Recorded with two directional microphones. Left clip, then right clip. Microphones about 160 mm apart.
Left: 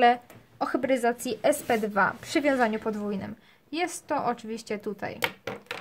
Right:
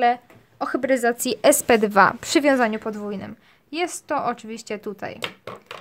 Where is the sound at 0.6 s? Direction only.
20° right (ahead or behind).